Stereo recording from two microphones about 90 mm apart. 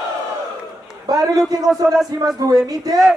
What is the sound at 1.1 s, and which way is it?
A man's voice, 45° right (ahead or behind).